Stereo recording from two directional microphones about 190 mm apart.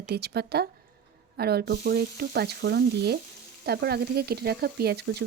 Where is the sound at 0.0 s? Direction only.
60° right (ahead or behind).